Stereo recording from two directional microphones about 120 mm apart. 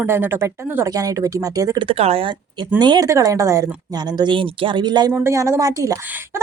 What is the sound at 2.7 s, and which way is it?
Speech, 35° right (ahead or behind).